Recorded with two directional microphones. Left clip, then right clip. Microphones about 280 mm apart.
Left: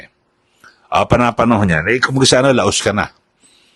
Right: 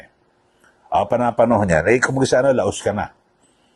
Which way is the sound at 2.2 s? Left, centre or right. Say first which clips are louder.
Left 4 dB; left.